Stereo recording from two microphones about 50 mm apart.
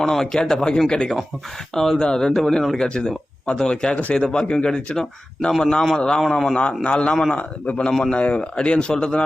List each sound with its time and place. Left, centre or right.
0.0 s speech: centre